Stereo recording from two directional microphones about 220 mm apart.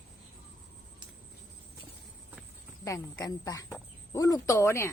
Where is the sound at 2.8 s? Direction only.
15° left (ahead or behind).